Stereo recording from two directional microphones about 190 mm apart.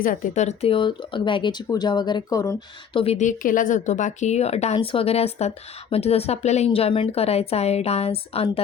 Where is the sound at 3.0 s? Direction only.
35° left (ahead or behind).